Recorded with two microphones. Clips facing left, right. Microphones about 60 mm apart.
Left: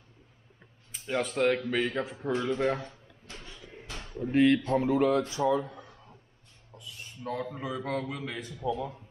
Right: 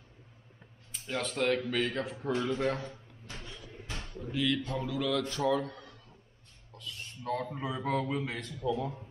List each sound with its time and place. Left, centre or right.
0.9 s a man's voice: centre
4.3 s speech: left
5.3 s a man's voice: centre
5.9 s a sound: left
6.7 s a sound: centre
7.4 s a man's voice: centre
7.7 s a man's voice: centre
8.0 s a man's voice: centre